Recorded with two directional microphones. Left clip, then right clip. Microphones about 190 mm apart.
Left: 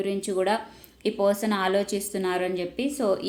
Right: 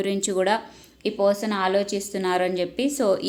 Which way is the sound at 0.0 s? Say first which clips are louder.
Right 3 dB; 25° right (ahead or behind).